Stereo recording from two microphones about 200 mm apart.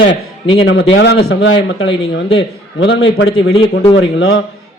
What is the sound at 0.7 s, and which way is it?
A man's voice, 65° left (ahead or behind).